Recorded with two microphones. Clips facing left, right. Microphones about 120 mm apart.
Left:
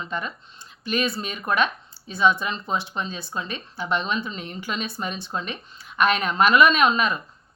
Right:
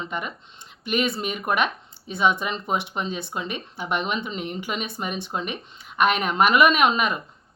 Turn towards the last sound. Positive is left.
turn(degrees=-20)  # may be behind; listen again after turning